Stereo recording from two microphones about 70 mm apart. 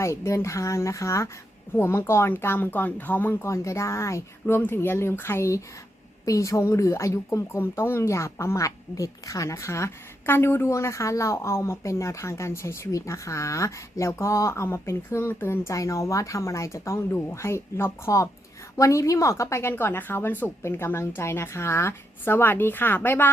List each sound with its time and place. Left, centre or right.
0.0 s a woman's voice: left
1.7 s speech: left
3.4 s speech: left
6.2 s a woman's voice: left
15.7 s a woman's voice: left